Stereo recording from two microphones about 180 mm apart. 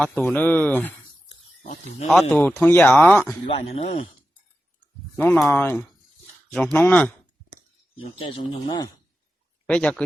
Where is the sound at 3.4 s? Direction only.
35° left (ahead or behind).